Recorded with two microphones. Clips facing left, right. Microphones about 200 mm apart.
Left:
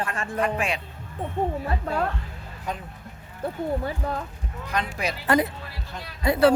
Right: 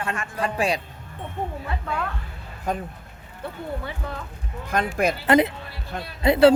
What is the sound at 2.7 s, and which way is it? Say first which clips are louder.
Speech: right 5 dB; 45° right (ahead or behind).